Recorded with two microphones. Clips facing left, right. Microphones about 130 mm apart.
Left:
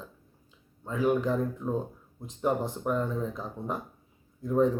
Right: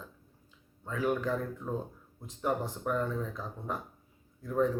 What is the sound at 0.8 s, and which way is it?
Speech, 20° left (ahead or behind).